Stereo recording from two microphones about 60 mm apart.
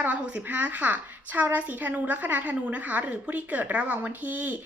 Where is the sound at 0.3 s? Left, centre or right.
Right.